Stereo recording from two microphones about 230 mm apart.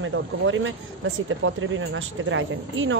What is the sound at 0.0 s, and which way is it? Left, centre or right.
Speech, right.